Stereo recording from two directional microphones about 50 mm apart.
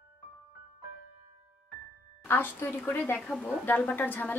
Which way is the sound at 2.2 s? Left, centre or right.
Left.